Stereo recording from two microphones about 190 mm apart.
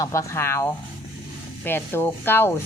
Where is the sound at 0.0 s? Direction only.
15° left (ahead or behind).